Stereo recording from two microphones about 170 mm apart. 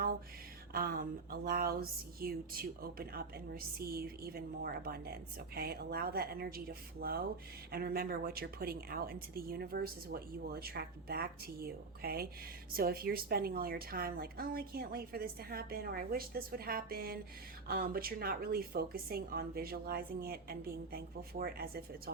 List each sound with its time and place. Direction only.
0.7 s speech: 65° right (ahead or behind)